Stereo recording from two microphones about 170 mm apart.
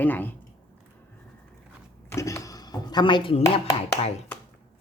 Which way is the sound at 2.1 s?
15° left (ahead or behind).